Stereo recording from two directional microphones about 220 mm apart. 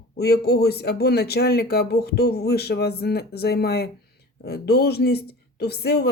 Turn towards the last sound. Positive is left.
turn(degrees=45)  # may be behind; listen again after turning